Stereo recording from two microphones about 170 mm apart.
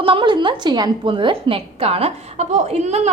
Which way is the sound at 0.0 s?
30° right (ahead or behind).